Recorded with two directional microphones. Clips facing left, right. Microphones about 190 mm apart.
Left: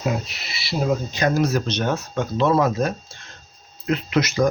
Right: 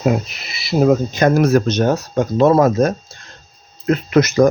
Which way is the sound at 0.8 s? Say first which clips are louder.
Right 8 dB; 50° right (ahead or behind).